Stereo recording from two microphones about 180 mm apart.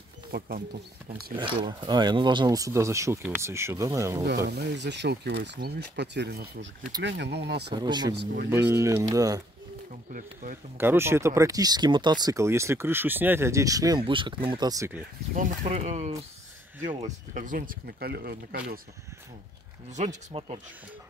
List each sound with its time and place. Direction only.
0.3 s speech: 60° right (ahead or behind)
1.4 s speech: 25° right (ahead or behind)
4.5 s speech: 70° right (ahead or behind)
7.7 s speech: 25° right (ahead or behind)
10.1 s speech: 50° right (ahead or behind)
10.8 s speech: 15° right (ahead or behind)
15.3 s speech: 40° right (ahead or behind)
17.3 s speech: 45° right (ahead or behind)
20.0 s speech: 35° right (ahead or behind)